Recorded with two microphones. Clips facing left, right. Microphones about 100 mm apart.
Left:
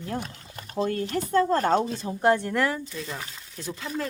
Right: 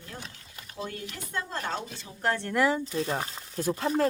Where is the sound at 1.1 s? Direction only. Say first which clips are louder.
Left 13 dB; 50° left (ahead or behind).